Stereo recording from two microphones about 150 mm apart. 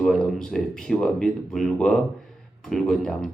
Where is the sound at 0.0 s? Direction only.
5° left (ahead or behind).